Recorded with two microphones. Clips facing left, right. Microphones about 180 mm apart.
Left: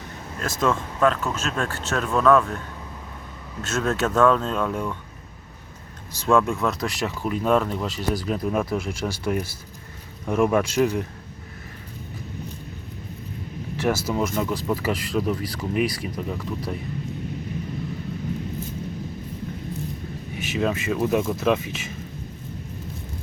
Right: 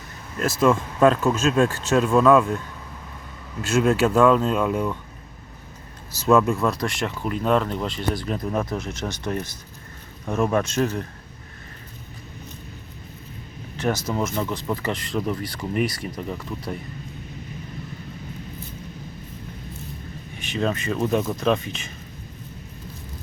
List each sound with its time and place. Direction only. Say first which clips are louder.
0.3 s speech: right 4 dB; 5° right (ahead or behind)
3.7 s speech: right 5 dB; 10° right (ahead or behind)
6.1 s speech: right 2 dB; 5° right (ahead or behind); by 11.0 s 10° left (ahead or behind)
13.7 s speech: left 1 dB; 10° left (ahead or behind)
20.4 s speech: even; 5° left (ahead or behind)